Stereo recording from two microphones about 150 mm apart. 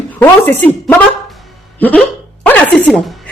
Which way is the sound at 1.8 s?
10° left (ahead or behind).